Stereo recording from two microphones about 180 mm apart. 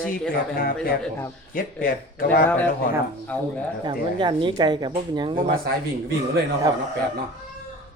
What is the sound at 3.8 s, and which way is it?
Speech, 25° right (ahead or behind).